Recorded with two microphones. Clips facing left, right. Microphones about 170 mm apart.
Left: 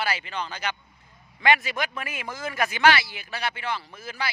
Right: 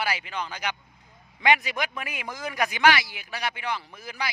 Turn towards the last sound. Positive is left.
turn(degrees=-15)  # may be behind; listen again after turning